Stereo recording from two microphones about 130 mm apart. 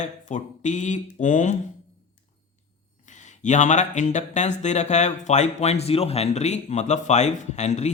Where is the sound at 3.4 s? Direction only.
65° left (ahead or behind).